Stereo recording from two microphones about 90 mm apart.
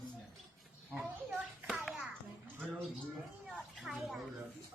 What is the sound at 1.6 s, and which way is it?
Hands, centre (ahead or behind).